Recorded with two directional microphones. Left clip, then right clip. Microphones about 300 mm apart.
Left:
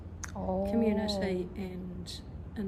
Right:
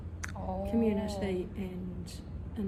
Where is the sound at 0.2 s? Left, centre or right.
Left.